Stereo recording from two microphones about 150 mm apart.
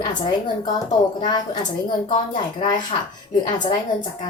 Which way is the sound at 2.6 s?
30° left (ahead or behind).